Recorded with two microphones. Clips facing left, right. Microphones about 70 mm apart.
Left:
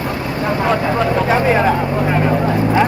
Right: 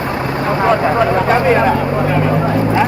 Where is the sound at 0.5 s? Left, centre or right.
Right.